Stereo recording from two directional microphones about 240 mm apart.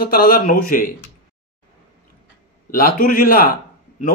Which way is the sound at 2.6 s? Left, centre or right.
Left.